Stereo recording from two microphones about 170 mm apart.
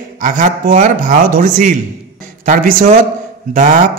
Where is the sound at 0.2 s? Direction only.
50° right (ahead or behind).